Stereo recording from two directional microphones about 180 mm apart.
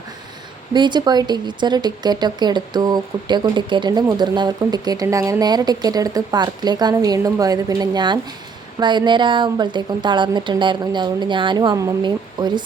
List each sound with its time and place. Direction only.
0.7 s speech: 25° right (ahead or behind)